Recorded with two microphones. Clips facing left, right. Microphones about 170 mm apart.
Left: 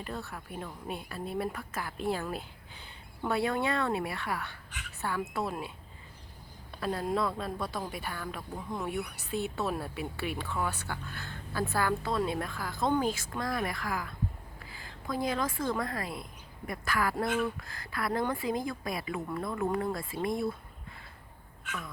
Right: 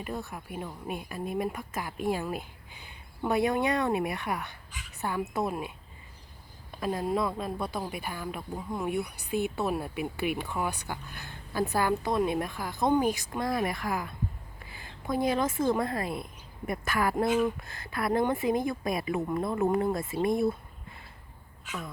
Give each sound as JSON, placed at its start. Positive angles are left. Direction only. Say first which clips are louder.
{"t": 0.0, "sound": "a woman's voice", "louder": "right 3 dB", "side_deg": -15}
{"t": 6.7, "sound": "a woman's voice", "louder": "right 2 dB", "side_deg": -15}